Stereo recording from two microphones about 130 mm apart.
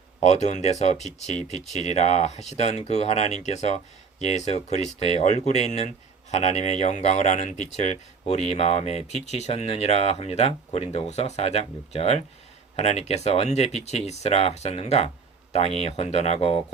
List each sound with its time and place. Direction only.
0.2 s speech: 65° left (ahead or behind)